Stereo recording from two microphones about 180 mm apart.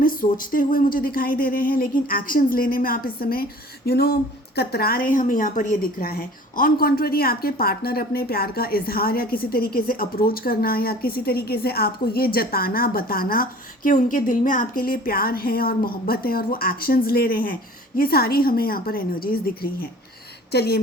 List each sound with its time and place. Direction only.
0.0 s a woman's voice: 50° left (ahead or behind)
20.5 s a woman's voice: 65° left (ahead or behind)